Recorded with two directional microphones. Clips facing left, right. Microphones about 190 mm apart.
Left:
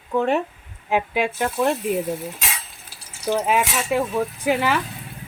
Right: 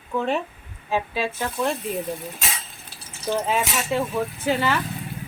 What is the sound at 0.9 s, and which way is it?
Speech, 15° left (ahead or behind).